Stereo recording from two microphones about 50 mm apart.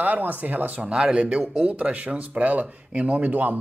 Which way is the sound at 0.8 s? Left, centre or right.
Centre.